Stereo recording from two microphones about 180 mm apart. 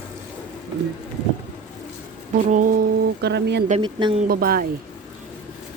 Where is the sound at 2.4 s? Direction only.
45° right (ahead or behind).